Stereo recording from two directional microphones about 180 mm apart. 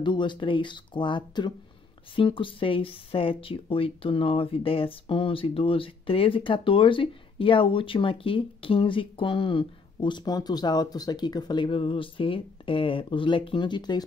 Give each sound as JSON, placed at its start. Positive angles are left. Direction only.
{"t": 0.0, "sound": "speech", "side_deg": 25}